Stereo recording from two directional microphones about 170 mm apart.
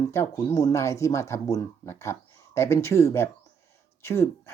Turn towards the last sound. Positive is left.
turn(degrees=15)  # may be behind; listen again after turning